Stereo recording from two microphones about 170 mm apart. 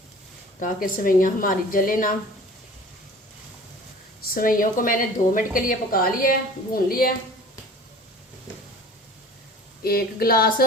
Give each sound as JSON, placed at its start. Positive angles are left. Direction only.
{"t": 0.6, "sound": "a woman's voice", "side_deg": 55}
{"t": 4.2, "sound": "a woman's voice", "side_deg": 55}
{"t": 9.8, "sound": "a woman's voice", "side_deg": 60}